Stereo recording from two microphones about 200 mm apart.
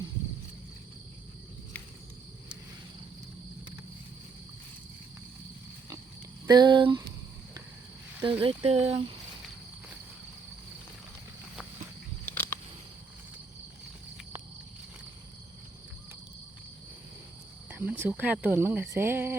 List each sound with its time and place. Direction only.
6.5 s speech: 20° right (ahead or behind)
8.2 s speech: 25° right (ahead or behind)
12.2 s a sound: 10° left (ahead or behind)
17.7 s speech: 10° right (ahead or behind)
18.9 s cricket: 10° right (ahead or behind)